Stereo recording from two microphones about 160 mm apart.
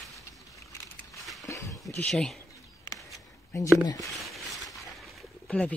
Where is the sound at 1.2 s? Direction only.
Centre (ahead or behind).